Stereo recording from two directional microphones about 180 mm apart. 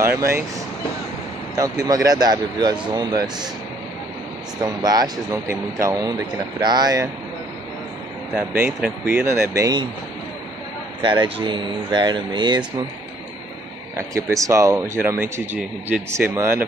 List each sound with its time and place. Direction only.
0.0 s speech: 15° right (ahead or behind)
1.6 s speech: 20° right (ahead or behind)
4.6 s speech: 20° right (ahead or behind)
8.4 s speech: 10° right (ahead or behind)
11.1 s speech: 30° right (ahead or behind)
13.9 s speech: 15° right (ahead or behind)